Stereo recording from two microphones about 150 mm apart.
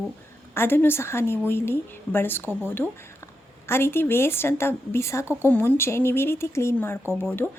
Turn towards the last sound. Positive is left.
turn(degrees=15)  # may be behind; listen again after turning